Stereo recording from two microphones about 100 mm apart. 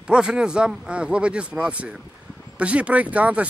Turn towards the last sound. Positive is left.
turn(degrees=-15)  # may be behind; listen again after turning